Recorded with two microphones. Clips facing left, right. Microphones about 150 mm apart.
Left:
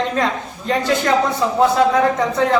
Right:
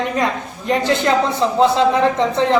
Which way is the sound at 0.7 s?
20° right (ahead or behind).